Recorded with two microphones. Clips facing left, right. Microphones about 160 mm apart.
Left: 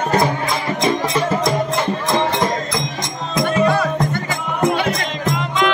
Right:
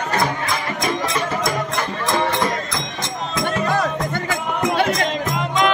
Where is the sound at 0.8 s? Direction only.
25° left (ahead or behind).